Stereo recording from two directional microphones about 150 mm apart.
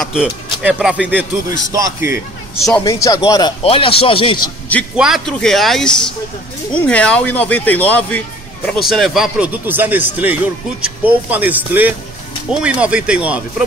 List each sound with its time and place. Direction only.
0.0 s speech: 5° right (ahead or behind)
1.7 s a man's voice: 25° right (ahead or behind)
2.8 s a man's voice: 20° left (ahead or behind)
3.6 s speech: 35° left (ahead or behind)
4.9 s speech: 5° right (ahead or behind)
8.8 s speech: centre (ahead or behind)